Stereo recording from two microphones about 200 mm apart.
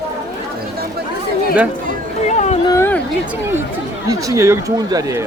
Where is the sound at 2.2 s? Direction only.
35° left (ahead or behind).